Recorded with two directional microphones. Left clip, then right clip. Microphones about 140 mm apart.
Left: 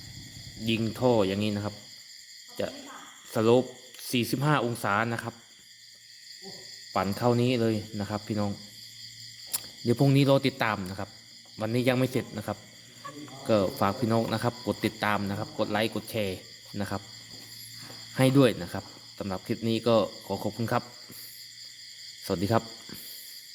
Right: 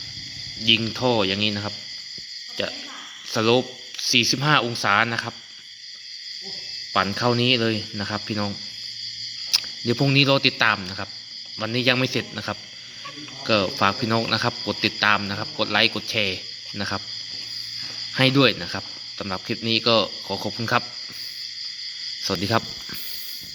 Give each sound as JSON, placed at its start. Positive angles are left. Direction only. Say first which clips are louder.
{"t": 0.6, "sound": "a man's voice", "louder": "right 7 dB", "side_deg": 10}
{"t": 6.9, "sound": "speech", "louder": "right 5 dB", "side_deg": 0}
{"t": 13.8, "sound": "speech", "louder": "right 6 dB", "side_deg": 10}
{"t": 18.1, "sound": "speech", "louder": "right 5 dB", "side_deg": 15}
{"t": 22.3, "sound": "speech", "louder": "right 4 dB", "side_deg": 5}